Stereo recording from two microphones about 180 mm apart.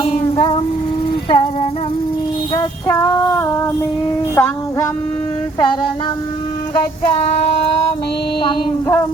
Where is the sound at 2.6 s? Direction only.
15° left (ahead or behind).